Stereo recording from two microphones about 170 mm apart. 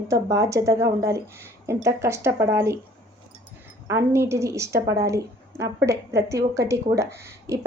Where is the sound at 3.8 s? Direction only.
15° right (ahead or behind).